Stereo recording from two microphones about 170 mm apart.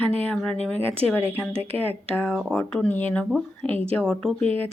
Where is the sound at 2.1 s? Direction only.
10° left (ahead or behind).